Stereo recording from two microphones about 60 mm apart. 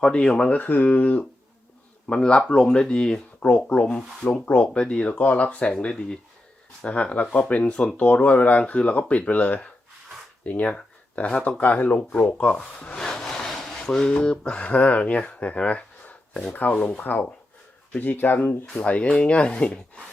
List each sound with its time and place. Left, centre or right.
0.0 s speech: centre
0.6 s speech: left
12.4 s rub: left
14.1 s speech: centre